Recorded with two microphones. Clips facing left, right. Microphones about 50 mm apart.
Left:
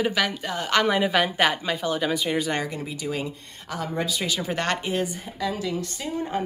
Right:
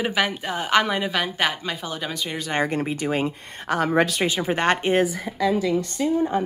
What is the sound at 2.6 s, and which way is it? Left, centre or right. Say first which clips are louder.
Speech: right 6 dB; right.